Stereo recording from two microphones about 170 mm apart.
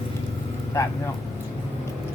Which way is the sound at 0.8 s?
20° left (ahead or behind).